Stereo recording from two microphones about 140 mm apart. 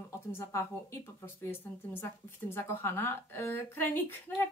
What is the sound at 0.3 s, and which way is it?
Speech, 20° left (ahead or behind).